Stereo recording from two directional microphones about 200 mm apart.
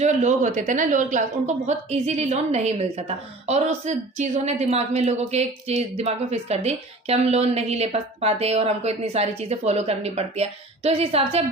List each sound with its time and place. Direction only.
0.0 s a woman's voice: 35° right (ahead or behind)